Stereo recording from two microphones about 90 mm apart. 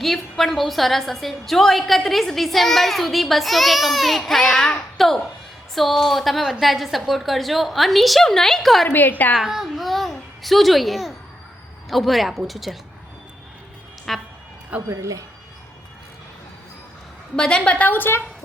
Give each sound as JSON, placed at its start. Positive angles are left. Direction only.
{"t": 0.0, "sound": "a woman's voice", "side_deg": 0}
{"t": 8.9, "sound": "a woman's voice", "side_deg": 20}
{"t": 9.3, "sound": "a child's voice", "side_deg": -5}
{"t": 14.1, "sound": "a woman's voice", "side_deg": 0}
{"t": 14.7, "sound": "a woman's voice", "side_deg": -25}
{"t": 17.3, "sound": "a woman's voice", "side_deg": 10}